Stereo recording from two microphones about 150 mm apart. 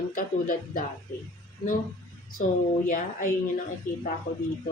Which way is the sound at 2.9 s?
65° left (ahead or behind).